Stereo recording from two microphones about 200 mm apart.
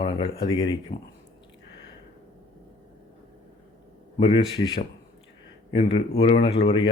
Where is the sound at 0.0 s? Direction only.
25° left (ahead or behind).